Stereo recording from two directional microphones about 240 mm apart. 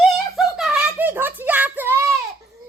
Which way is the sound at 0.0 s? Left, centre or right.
Centre.